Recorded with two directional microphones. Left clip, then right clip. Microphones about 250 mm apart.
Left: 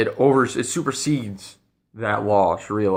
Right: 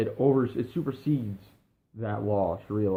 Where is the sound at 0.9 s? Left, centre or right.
Left.